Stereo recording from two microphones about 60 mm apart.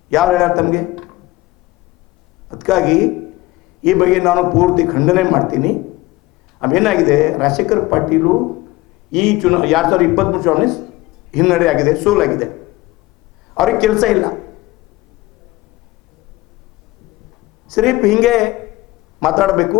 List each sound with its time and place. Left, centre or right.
0.1 s a man's voice: centre
2.5 s a man's voice: centre
17.7 s a man's voice: centre